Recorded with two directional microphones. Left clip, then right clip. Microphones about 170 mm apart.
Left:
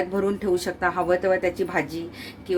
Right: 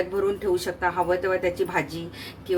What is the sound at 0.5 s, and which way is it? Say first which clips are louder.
A woman's voice: left 1 dB; 35° left (ahead or behind).